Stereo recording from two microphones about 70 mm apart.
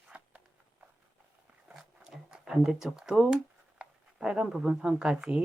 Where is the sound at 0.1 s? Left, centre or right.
Centre.